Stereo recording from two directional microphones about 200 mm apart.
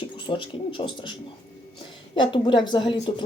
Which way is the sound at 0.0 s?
25° left (ahead or behind).